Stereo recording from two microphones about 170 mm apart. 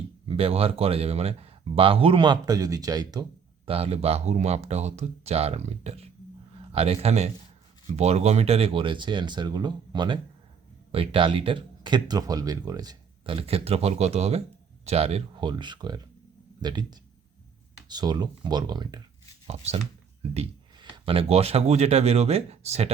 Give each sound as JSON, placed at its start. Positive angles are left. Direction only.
{"t": 0.3, "sound": "speech", "side_deg": -35}
{"t": 3.7, "sound": "a man's voice", "side_deg": -35}
{"t": 19.5, "sound": "speech", "side_deg": -35}
{"t": 20.3, "sound": "a sound", "side_deg": -35}
{"t": 20.9, "sound": "speech", "side_deg": -30}